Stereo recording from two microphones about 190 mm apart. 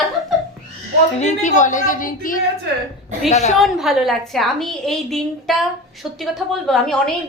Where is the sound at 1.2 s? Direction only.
40° left (ahead or behind).